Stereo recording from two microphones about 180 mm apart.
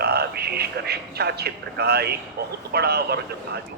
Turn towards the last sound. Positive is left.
turn(degrees=-65)  # may be behind; listen again after turning